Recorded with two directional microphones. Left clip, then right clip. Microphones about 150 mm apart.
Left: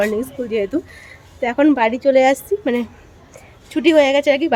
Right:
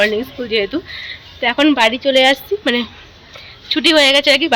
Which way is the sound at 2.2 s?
5° left (ahead or behind).